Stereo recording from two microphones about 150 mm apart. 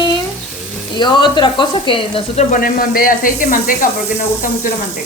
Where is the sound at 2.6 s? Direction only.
70° left (ahead or behind).